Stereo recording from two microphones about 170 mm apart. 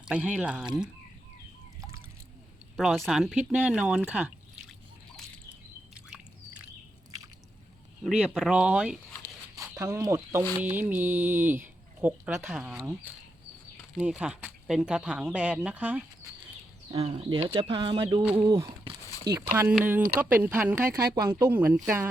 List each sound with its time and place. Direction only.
0.0 s speech: 10° right (ahead or behind)
2.7 s speech: centre (ahead or behind)
8.0 s speech: 5° right (ahead or behind)
9.8 s speech: 15° right (ahead or behind)
16.9 s speech: 35° right (ahead or behind)
18.2 s speech: 10° right (ahead or behind)
18.4 s a sound: 20° right (ahead or behind)
20.1 s speech: 10° right (ahead or behind)